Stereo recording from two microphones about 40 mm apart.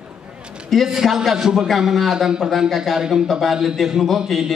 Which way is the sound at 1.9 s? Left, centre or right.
Centre.